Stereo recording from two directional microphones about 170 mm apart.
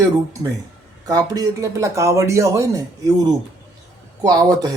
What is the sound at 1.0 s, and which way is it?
Speech, 20° right (ahead or behind).